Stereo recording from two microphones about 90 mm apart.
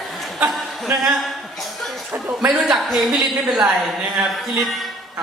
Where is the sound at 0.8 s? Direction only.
Centre (ahead or behind).